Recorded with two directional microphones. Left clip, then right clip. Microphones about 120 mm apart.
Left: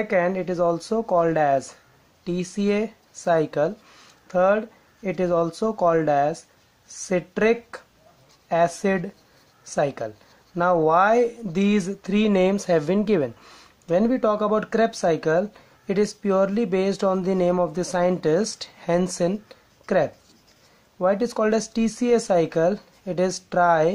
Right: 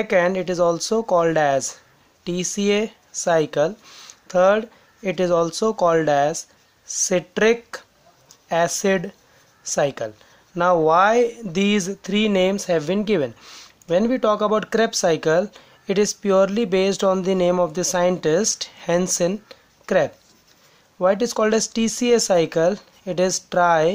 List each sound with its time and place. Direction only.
0.0 s speech: 30° right (ahead or behind)
19.4 s a sound: 20° right (ahead or behind)
21.0 s speech: 25° right (ahead or behind)